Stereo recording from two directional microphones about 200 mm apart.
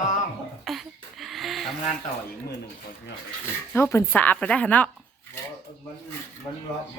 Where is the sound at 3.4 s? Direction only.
10° left (ahead or behind).